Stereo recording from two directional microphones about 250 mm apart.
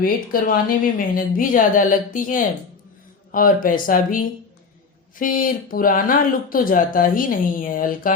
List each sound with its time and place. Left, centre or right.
0.0 s speech: left